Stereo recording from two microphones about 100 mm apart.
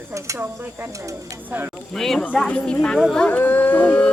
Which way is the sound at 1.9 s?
5° left (ahead or behind).